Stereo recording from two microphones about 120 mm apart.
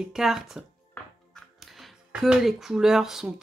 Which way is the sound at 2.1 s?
5° right (ahead or behind).